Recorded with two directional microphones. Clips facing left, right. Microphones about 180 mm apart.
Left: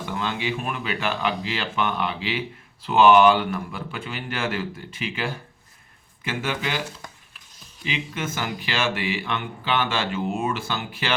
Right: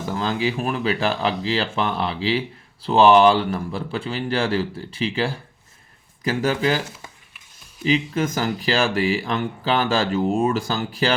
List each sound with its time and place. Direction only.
0.0 s speech: 35° right (ahead or behind)
7.9 s speech: 40° right (ahead or behind)